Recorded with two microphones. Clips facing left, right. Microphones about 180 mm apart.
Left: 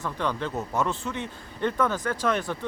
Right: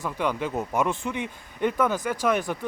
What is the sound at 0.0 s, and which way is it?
Speech, 10° right (ahead or behind).